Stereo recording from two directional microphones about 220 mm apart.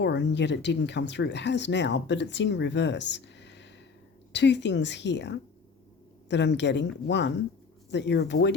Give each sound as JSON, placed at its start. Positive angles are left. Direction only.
{"t": 0.0, "sound": "speech", "side_deg": 50}